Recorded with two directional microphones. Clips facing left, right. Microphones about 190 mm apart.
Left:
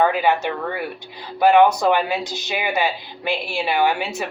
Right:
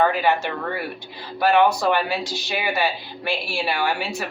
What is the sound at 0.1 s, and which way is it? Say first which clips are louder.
Speech: left 2 dB; 15° left (ahead or behind).